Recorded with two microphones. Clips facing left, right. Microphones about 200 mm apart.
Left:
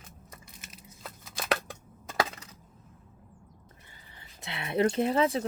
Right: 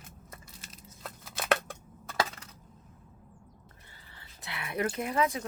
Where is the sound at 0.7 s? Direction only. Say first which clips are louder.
Right 1 dB; centre (ahead or behind).